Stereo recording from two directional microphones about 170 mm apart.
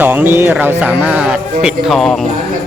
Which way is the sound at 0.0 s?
10° right (ahead or behind).